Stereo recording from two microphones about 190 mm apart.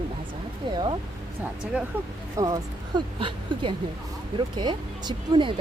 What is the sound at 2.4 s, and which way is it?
Speech, 25° right (ahead or behind).